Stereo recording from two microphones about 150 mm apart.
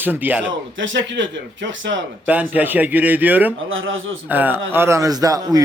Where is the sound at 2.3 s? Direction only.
10° right (ahead or behind).